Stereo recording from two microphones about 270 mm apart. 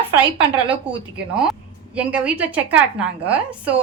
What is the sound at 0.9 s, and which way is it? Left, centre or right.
A woman's voice, centre.